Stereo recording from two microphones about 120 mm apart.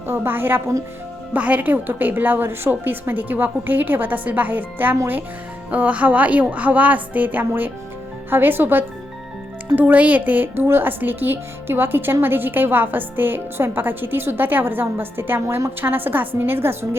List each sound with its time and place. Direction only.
0.1 s a woman's voice: 15° right (ahead or behind)